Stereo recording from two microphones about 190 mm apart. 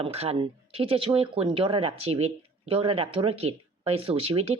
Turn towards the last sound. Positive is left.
turn(degrees=-30)  # may be behind; listen again after turning